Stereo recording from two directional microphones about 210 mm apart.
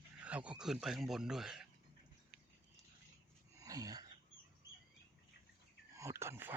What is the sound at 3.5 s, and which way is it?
Wheeze, 15° right (ahead or behind).